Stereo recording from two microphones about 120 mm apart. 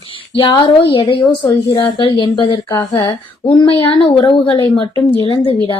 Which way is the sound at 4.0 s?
50° left (ahead or behind).